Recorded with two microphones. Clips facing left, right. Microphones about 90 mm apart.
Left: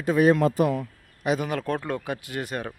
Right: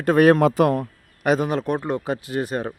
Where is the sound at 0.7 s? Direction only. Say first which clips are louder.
Right 5 dB; 50° right (ahead or behind).